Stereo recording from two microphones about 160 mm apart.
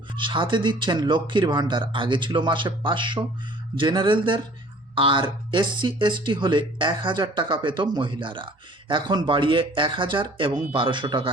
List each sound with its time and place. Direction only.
0.2 s speech: 30° right (ahead or behind)